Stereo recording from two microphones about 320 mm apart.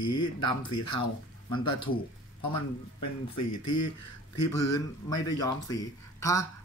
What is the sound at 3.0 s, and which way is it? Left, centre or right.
Speech, left.